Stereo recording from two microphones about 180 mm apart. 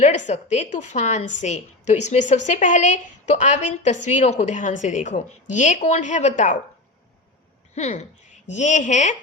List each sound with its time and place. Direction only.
0.0 s a woman's voice: 40° left (ahead or behind)
7.8 s speech: 40° left (ahead or behind)